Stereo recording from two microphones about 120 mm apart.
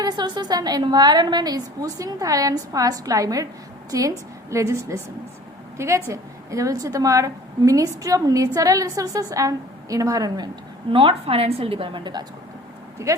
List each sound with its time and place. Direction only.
0.0 s a woman's voice: 35° right (ahead or behind)
10.9 s a woman's voice: 50° right (ahead or behind)
13.1 s a woman's voice: 25° right (ahead or behind)